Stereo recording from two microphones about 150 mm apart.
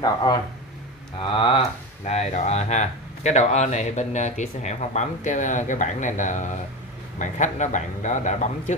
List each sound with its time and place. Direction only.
0.0 s speech: 25° left (ahead or behind)
2.0 s speech: 45° left (ahead or behind)